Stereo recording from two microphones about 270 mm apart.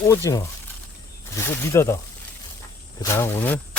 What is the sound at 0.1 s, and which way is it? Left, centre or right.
Speech, centre.